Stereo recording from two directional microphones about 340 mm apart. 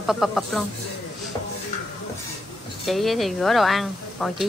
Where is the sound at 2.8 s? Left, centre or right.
Centre.